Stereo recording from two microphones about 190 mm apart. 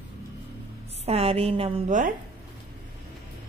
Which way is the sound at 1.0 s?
30° right (ahead or behind).